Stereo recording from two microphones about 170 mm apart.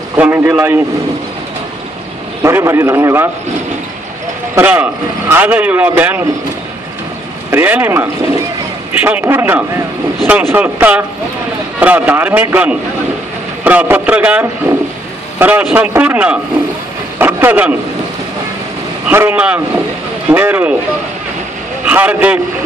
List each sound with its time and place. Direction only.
0.2 s a man's voice: 10° right (ahead or behind)
2.4 s a man's voice: 15° right (ahead or behind)
4.6 s a man's voice: 10° right (ahead or behind)
7.5 s a man's voice: 10° right (ahead or behind)
19.0 s a man's voice: 10° right (ahead or behind)
21.8 s a man's voice: 10° right (ahead or behind)